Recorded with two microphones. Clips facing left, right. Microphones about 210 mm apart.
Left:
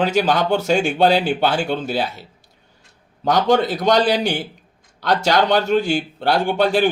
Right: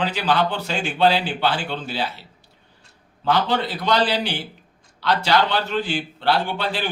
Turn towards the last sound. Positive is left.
turn(degrees=45)  # may be behind; listen again after turning